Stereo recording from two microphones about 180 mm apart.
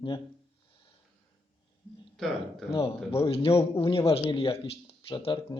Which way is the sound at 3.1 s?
30° left (ahead or behind).